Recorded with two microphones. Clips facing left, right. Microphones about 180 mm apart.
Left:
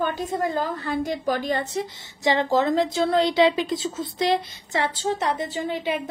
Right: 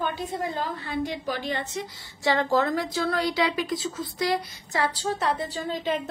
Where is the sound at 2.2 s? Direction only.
20° left (ahead or behind).